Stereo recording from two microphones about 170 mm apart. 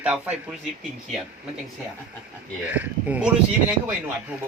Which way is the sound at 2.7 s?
10° right (ahead or behind).